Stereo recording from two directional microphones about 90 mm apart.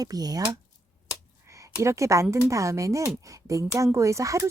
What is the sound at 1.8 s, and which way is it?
Speech, 35° right (ahead or behind).